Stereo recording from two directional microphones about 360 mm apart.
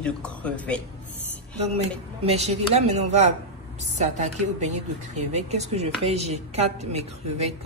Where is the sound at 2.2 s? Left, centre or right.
Centre.